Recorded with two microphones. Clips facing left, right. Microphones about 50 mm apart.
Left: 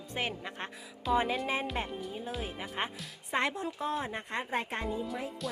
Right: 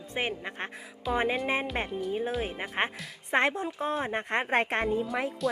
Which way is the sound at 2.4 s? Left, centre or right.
Right.